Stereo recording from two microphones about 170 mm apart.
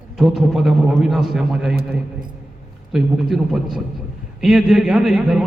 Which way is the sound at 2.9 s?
Centre (ahead or behind).